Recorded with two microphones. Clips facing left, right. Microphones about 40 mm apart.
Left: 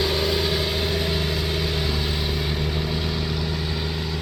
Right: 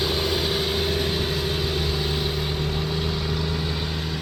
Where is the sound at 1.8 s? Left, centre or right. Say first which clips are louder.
Even; left.